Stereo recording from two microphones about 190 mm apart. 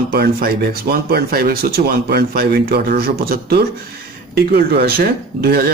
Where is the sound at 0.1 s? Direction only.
55° right (ahead or behind).